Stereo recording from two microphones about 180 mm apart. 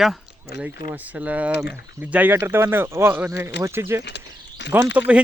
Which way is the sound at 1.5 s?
70° left (ahead or behind).